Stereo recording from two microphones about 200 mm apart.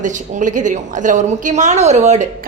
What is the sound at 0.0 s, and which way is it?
A woman's voice, 40° right (ahead or behind).